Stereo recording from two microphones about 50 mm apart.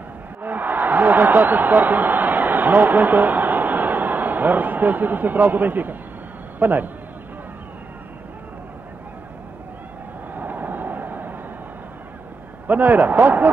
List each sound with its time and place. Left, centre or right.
0.4 s a sound: right
6.6 s speech: right
10.3 s vehicle: right
12.6 s speech: right